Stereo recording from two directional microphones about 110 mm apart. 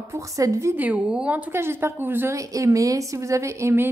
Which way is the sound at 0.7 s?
15° right (ahead or behind).